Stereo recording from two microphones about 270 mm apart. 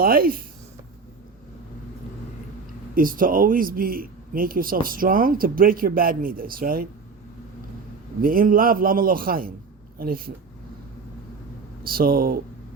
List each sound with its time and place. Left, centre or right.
0.0 s a man's voice: right
2.9 s a man's voice: right
8.2 s a man's voice: right
11.9 s a man's voice: right